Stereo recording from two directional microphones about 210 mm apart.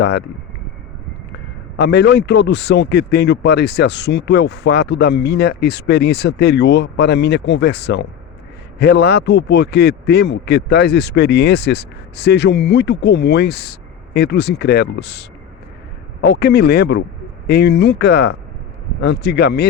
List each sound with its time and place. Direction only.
0.0 s speech: 50° left (ahead or behind)
1.7 s speech: 55° left (ahead or behind)